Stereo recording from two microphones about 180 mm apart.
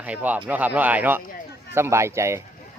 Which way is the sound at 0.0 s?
10° right (ahead or behind).